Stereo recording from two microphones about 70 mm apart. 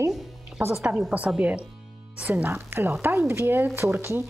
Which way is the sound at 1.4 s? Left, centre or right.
Centre.